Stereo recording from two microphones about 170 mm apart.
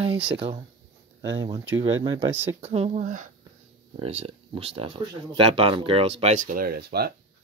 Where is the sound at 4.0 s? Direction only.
35° right (ahead or behind); by 7.1 s 65° right (ahead or behind).